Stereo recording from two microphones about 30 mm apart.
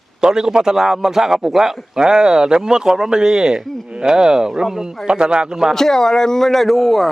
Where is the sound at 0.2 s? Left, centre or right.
Right.